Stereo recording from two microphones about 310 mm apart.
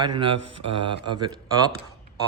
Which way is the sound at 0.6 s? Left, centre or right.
Right.